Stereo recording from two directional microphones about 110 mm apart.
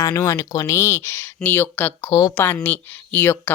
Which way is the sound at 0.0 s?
35° left (ahead or behind).